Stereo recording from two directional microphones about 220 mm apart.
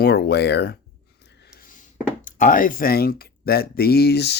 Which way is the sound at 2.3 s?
35° left (ahead or behind).